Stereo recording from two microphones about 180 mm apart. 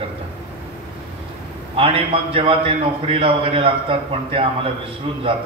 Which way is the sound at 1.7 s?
30° right (ahead or behind).